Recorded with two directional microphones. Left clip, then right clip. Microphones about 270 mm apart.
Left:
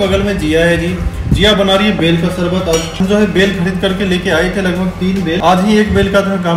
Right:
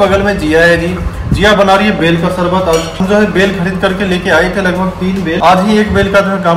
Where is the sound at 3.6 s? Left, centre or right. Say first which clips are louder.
Right 2 dB; centre.